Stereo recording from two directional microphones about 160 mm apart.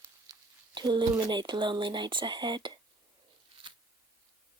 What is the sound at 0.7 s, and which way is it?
Speech, 30° right (ahead or behind).